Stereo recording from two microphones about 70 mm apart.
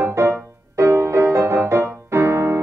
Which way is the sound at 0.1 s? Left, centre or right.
Right.